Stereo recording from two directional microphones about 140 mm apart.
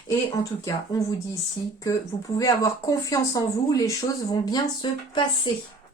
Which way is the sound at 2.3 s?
25° left (ahead or behind).